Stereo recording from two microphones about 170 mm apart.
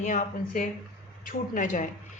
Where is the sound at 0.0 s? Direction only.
50° left (ahead or behind).